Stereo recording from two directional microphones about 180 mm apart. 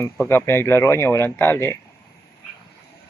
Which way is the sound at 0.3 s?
15° left (ahead or behind).